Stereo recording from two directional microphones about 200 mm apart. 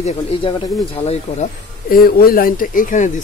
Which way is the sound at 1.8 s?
45° left (ahead or behind).